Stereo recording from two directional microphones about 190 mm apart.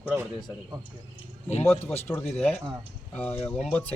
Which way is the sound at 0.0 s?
10° right (ahead or behind).